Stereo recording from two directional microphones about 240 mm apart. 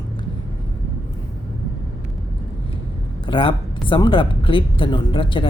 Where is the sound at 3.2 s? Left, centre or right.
Left.